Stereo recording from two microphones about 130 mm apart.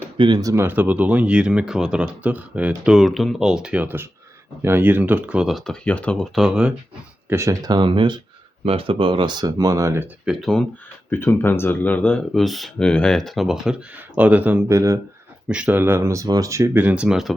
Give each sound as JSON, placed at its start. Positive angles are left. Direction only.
{"t": 0.2, "sound": "speech", "side_deg": -30}
{"t": 6.3, "sound": "speech", "side_deg": -5}
{"t": 7.3, "sound": "speech", "side_deg": -20}
{"t": 10.2, "sound": "speech", "side_deg": 0}
{"t": 11.1, "sound": "speech", "side_deg": 15}
{"t": 15.4, "sound": "speech", "side_deg": -10}